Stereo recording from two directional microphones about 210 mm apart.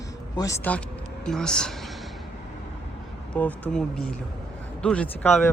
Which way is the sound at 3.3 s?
5° left (ahead or behind).